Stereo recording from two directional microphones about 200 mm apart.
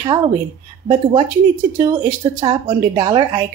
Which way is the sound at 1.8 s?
20° right (ahead or behind).